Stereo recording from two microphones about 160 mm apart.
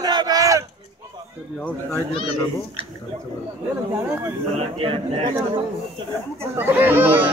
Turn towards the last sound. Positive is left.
turn(degrees=-10)  # may be behind; listen again after turning